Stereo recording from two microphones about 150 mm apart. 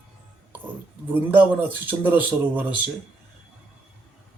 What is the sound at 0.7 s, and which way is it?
Speech, 15° right (ahead or behind).